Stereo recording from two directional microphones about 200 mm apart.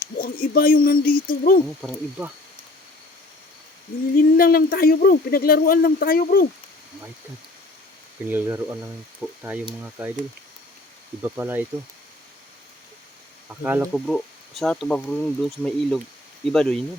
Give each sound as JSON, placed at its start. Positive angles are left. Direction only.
{"t": 0.2, "sound": "speech", "side_deg": 45}
{"t": 1.8, "sound": "speech", "side_deg": 0}
{"t": 4.2, "sound": "speech", "side_deg": 50}
{"t": 8.3, "sound": "speech", "side_deg": -10}
{"t": 11.2, "sound": "speech", "side_deg": -10}
{"t": 13.5, "sound": "speech", "side_deg": -5}